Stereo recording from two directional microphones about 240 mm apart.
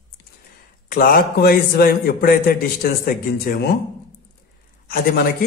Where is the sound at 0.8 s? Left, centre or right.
Left.